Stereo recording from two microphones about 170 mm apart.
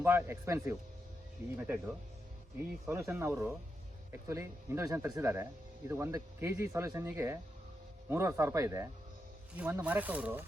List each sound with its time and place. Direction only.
0.0 s speech: 15° right (ahead or behind)
2.9 s speech: 15° right (ahead or behind)